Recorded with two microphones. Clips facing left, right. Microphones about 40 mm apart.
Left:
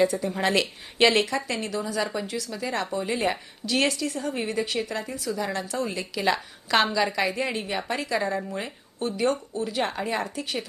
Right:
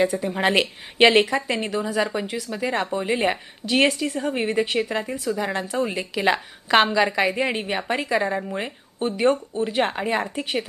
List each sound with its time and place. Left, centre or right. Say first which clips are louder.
0.0 s a woman's voice: right 2 dB; right